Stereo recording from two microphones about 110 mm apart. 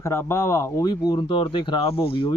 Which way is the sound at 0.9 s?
40° left (ahead or behind).